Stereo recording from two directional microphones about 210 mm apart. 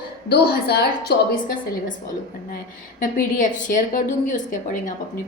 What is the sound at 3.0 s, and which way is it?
A woman's voice, 40° left (ahead or behind).